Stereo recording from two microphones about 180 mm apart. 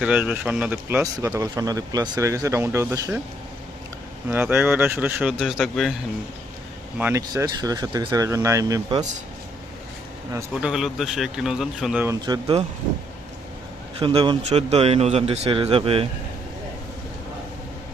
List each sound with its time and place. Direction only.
0.0 s speech: 5° right (ahead or behind)
1.1 s speech: 20° right (ahead or behind)
4.3 s speech: 10° right (ahead or behind)
7.0 s speech: 15° right (ahead or behind)
10.3 s speech: 5° right (ahead or behind)
12.0 s speech: 20° right (ahead or behind)
14.0 s speech: 30° right (ahead or behind)